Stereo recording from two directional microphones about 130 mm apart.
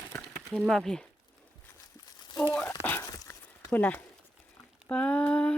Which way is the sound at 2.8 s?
15° left (ahead or behind).